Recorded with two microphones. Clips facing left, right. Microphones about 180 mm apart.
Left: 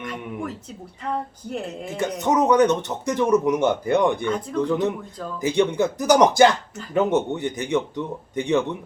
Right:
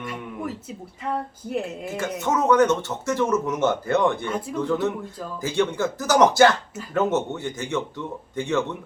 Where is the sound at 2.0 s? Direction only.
15° left (ahead or behind).